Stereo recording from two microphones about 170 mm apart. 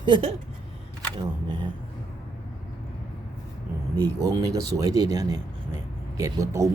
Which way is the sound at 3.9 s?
20° right (ahead or behind).